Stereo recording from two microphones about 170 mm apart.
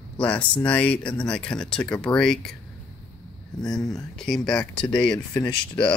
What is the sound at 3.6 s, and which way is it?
Speech, 5° left (ahead or behind).